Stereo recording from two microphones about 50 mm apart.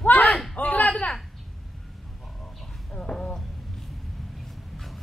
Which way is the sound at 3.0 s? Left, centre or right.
Centre.